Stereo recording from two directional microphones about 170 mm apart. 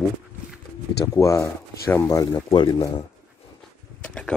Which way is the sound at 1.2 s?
15° left (ahead or behind).